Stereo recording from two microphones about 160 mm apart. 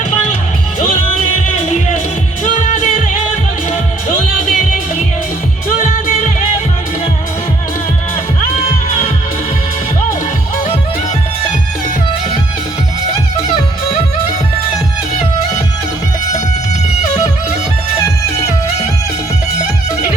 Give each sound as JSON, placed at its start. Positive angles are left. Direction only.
{"t": 1.5, "sound": "music", "side_deg": 50}
{"t": 5.7, "sound": "music", "side_deg": 45}